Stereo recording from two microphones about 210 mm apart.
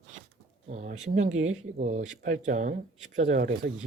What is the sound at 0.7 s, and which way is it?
Speech, 35° right (ahead or behind).